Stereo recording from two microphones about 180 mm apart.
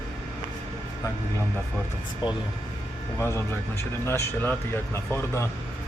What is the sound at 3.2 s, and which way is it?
Speech, 15° left (ahead or behind).